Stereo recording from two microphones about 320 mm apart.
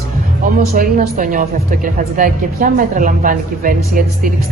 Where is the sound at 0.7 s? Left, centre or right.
Right.